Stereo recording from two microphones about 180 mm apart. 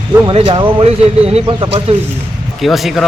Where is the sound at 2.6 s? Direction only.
Centre (ahead or behind).